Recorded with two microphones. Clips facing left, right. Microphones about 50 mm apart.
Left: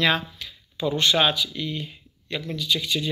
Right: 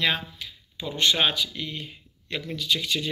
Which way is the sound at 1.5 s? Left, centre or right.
Right.